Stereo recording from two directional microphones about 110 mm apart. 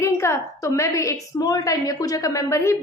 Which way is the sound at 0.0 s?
25° left (ahead or behind).